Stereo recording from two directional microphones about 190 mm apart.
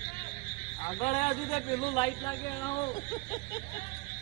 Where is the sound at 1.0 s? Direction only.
35° left (ahead or behind).